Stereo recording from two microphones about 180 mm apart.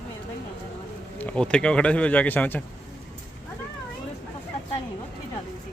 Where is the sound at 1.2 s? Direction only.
5° left (ahead or behind).